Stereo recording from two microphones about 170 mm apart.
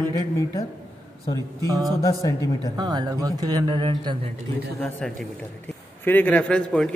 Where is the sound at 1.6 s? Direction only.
20° right (ahead or behind).